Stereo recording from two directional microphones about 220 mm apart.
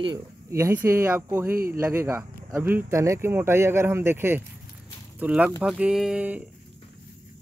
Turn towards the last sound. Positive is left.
turn(degrees=-5)  # may be behind; listen again after turning